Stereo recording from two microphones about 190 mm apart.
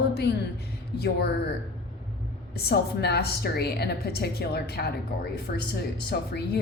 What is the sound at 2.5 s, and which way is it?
Speech, 55° left (ahead or behind).